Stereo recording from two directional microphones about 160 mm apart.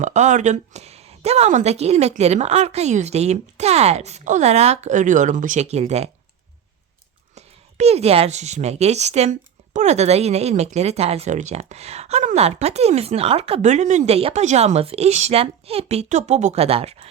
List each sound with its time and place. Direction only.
0.0 s speech: 50° right (ahead or behind)
7.3 s speech: 40° right (ahead or behind)